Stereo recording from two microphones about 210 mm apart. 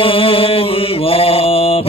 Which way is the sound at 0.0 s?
25° left (ahead or behind).